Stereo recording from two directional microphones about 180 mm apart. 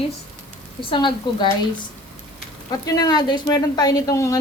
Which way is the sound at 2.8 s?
20° left (ahead or behind).